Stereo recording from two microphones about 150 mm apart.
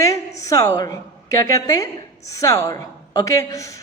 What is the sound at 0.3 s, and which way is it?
A woman's voice, 20° left (ahead or behind).